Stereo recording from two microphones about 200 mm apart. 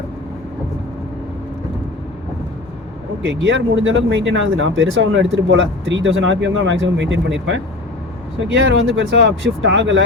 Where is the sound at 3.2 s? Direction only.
70° right (ahead or behind).